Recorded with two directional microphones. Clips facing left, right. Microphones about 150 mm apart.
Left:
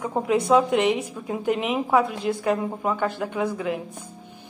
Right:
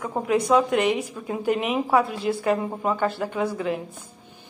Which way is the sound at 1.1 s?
5° left (ahead or behind).